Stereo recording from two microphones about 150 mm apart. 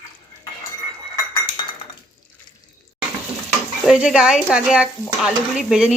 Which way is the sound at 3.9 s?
5° right (ahead or behind).